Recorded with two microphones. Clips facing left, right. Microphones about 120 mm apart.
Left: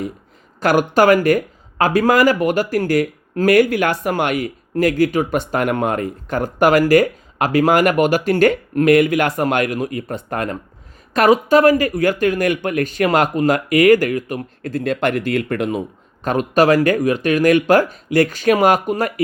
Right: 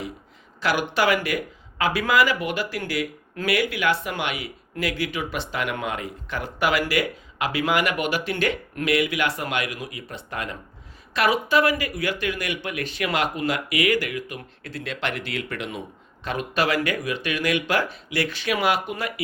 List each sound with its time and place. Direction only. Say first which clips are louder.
0.6 s speech: left 9 dB; 45° left (ahead or behind)